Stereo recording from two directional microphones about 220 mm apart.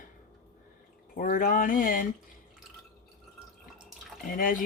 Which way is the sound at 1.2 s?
40° left (ahead or behind).